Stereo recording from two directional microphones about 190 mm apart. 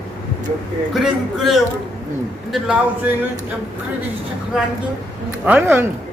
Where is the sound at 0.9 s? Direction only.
Centre (ahead or behind).